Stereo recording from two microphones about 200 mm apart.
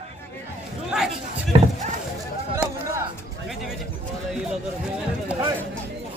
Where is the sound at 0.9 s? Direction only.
5° right (ahead or behind).